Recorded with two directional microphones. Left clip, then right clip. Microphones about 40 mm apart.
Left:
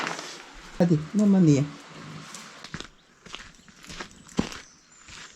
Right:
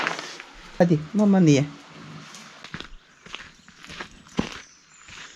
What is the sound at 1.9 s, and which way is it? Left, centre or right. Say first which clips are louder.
Music: even; left.